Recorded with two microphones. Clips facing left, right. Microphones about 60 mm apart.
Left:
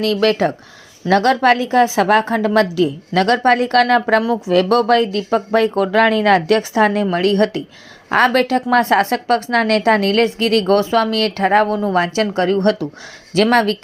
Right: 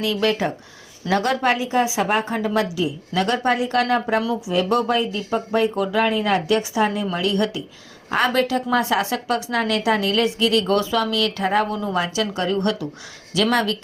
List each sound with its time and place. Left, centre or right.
0.0 s speech: left
4.4 s a woman's voice: left